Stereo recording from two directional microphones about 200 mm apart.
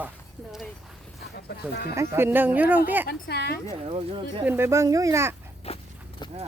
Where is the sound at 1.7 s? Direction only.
55° left (ahead or behind).